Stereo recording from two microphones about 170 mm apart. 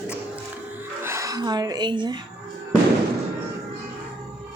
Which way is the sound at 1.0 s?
15° right (ahead or behind).